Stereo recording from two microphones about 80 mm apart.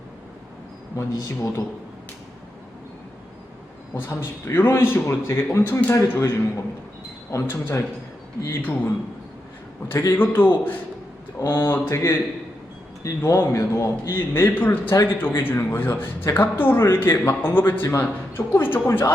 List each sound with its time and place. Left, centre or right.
0.9 s a man's voice: left
4.4 s a man's voice: left
7.4 s a man's voice: left
10.1 s a man's voice: left
11.3 s a man's voice: left
11.7 s a man's voice: left
13.2 s a man's voice: left